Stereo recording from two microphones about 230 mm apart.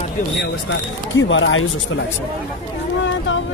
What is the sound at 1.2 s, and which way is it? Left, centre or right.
Speech, left.